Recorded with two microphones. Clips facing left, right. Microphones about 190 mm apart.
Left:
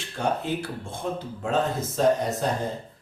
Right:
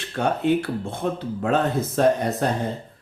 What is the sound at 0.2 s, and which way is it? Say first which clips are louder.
Speech: right 6 dB; 60° right (ahead or behind).